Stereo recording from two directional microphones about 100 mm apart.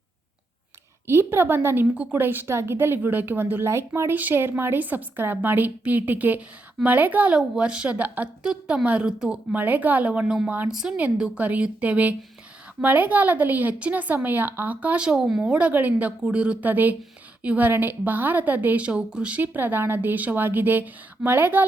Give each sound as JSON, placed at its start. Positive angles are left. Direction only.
{"t": 1.0, "sound": "a woman's voice", "side_deg": -25}